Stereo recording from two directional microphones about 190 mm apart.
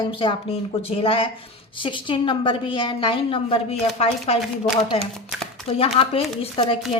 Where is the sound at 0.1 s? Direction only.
25° left (ahead or behind).